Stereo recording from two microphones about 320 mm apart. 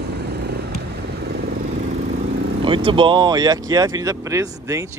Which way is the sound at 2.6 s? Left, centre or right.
Centre.